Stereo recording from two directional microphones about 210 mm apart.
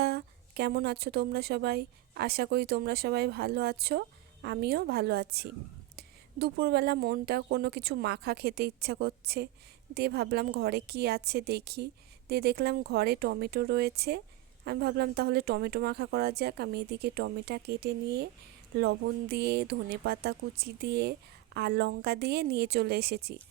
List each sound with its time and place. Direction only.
0.0 s speech: 50° right (ahead or behind)